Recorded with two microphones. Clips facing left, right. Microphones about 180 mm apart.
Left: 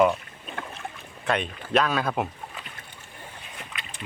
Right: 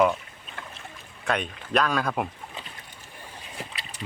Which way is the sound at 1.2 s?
Centre (ahead or behind).